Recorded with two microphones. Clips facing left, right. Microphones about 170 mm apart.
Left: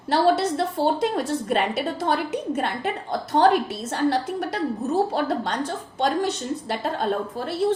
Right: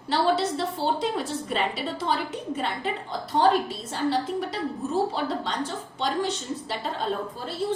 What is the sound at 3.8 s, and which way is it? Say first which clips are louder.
Speech: left 4 dB; 65° left (ahead or behind).